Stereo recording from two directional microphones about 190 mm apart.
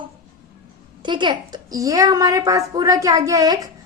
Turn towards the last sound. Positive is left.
turn(degrees=-20)  # may be behind; listen again after turning